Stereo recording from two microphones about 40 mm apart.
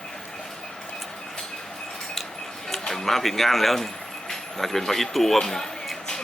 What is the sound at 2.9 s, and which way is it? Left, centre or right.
Speech, centre.